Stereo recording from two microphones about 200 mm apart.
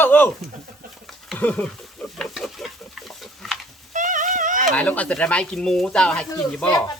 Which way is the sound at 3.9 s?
40° right (ahead or behind).